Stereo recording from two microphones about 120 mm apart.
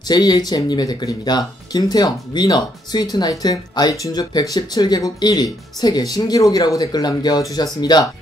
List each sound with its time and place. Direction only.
0.1 s speech: 35° left (ahead or behind)